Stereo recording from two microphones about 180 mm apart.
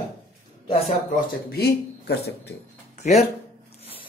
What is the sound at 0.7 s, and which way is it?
Speech, 35° left (ahead or behind).